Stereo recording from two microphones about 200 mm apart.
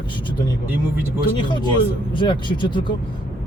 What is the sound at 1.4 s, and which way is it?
Speech, 25° left (ahead or behind).